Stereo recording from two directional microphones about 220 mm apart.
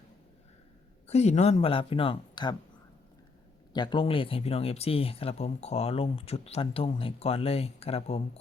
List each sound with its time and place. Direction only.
1.0 s speech: 30° left (ahead or behind)
3.7 s speech: 20° left (ahead or behind)